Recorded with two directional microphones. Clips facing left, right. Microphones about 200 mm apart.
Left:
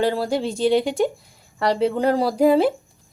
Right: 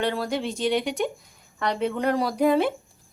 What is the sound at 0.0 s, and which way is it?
Speech, 30° left (ahead or behind).